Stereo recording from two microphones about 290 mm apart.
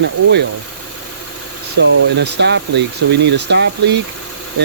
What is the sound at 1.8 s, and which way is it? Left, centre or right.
Speech, right.